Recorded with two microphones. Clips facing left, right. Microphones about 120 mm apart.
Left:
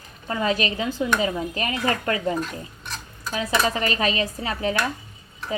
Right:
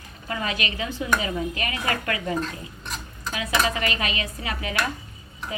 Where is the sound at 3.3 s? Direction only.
35° left (ahead or behind).